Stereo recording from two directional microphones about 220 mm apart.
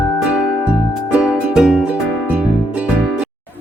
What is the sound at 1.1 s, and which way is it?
Music, 5° right (ahead or behind).